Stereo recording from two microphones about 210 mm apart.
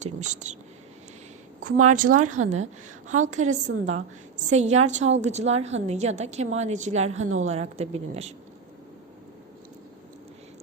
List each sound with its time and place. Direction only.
0.0 s a woman's voice: 35° right (ahead or behind)
1.6 s a woman's voice: 40° right (ahead or behind)
7.3 s a woman's voice: 75° right (ahead or behind)
7.9 s a woman's voice: 30° right (ahead or behind)